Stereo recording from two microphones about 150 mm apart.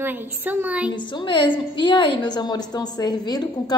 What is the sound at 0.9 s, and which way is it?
A woman's voice, 35° left (ahead or behind).